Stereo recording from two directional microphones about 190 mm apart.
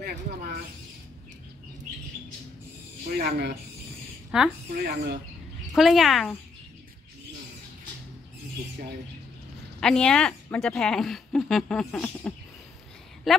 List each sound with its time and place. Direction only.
3.2 s speech: 55° right (ahead or behind)
4.3 s a woman's voice: 5° right (ahead or behind)
4.6 s speech: 55° right (ahead or behind)
5.8 s a woman's voice: centre (ahead or behind)
9.8 s a woman's voice: 5° left (ahead or behind)